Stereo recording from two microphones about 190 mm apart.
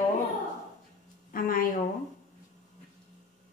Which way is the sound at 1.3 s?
45° left (ahead or behind).